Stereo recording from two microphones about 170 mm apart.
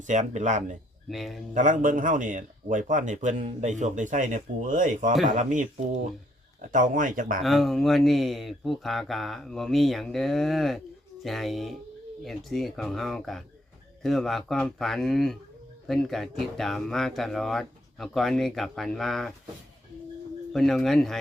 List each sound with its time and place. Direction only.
0.1 s speech: 45° right (ahead or behind)
1.1 s speech: centre (ahead or behind)
1.5 s speech: 50° right (ahead or behind)
7.4 s speech: centre (ahead or behind)
20.5 s speech: centre (ahead or behind)